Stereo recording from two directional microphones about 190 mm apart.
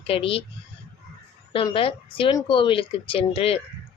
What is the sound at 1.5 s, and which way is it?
A woman's voice, 30° left (ahead or behind).